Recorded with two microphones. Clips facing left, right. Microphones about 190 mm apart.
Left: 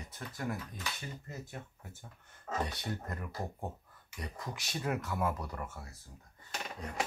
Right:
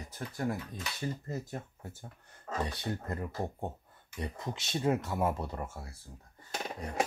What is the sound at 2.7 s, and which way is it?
Speech, 30° right (ahead or behind).